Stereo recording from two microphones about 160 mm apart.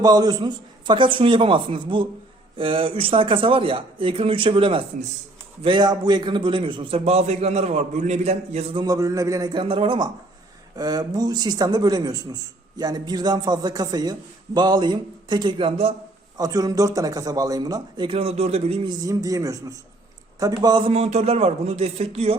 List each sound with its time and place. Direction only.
0.0 s a man's voice: 25° right (ahead or behind); by 8.8 s 40° right (ahead or behind)
8.8 s speech: 20° right (ahead or behind)
16.4 s speech: 25° right (ahead or behind); by 18.8 s 40° right (ahead or behind)
18.9 s speech: 20° right (ahead or behind)
20.9 s a man's voice: 40° right (ahead or behind)